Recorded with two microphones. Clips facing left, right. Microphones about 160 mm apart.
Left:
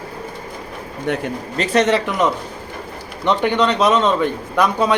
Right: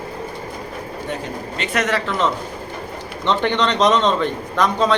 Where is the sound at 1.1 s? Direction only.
70° left (ahead or behind).